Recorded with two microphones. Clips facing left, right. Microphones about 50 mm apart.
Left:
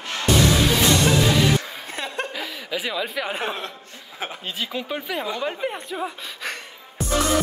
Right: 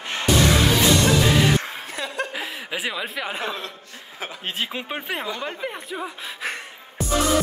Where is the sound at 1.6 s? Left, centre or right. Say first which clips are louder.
Right 2 dB; right.